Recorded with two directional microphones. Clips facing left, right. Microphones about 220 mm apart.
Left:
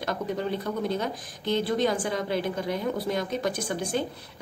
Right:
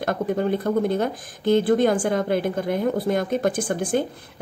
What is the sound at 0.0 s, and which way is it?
Speech, 50° right (ahead or behind).